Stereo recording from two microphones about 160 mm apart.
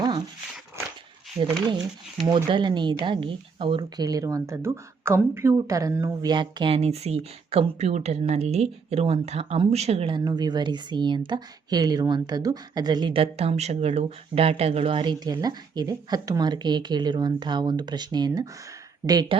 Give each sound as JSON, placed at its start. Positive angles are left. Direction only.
{"t": 0.0, "sound": "dog", "side_deg": -25}
{"t": 2.2, "sound": "speech", "side_deg": -30}